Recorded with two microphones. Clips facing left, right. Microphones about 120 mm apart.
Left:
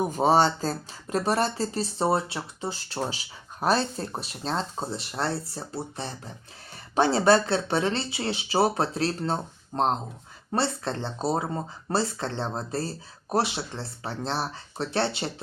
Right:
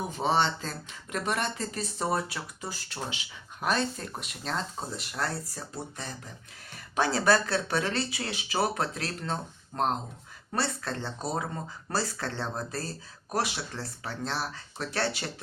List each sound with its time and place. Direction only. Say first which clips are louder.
0.1 s speech: left 4 dB; 40° left (ahead or behind)